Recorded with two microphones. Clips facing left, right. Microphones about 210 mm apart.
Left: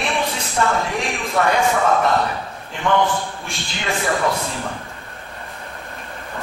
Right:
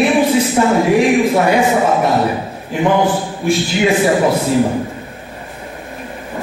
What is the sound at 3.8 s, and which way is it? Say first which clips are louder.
Speech: right 7 dB; 15° right (ahead or behind).